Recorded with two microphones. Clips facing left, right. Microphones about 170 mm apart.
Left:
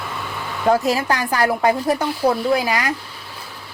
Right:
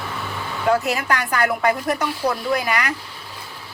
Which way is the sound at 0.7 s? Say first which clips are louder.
Left 2 dB; 35° left (ahead or behind).